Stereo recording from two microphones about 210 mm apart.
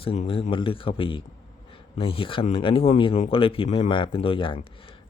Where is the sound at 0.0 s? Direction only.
30° left (ahead or behind).